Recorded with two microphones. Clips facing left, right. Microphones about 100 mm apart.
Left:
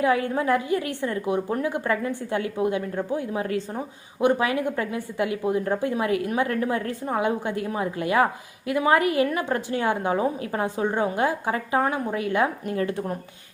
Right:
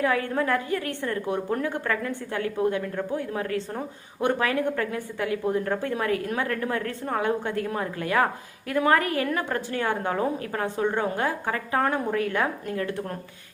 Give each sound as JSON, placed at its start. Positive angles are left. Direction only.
{"t": 0.0, "sound": "a woman's voice", "side_deg": 15}